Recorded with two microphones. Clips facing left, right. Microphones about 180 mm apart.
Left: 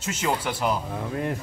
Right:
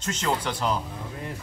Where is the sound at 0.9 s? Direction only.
65° left (ahead or behind).